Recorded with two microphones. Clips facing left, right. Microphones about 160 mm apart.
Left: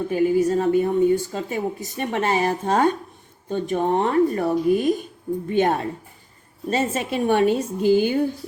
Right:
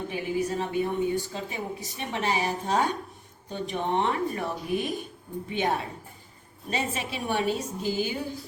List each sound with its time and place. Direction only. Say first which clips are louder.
0.1 s a woman's voice: left 11 dB; 45° left (ahead or behind)
3.5 s a woman's voice: left 7 dB; 40° left (ahead or behind)